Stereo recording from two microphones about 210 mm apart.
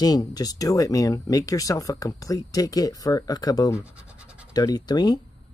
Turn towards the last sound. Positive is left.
turn(degrees=20)  # may be behind; listen again after turning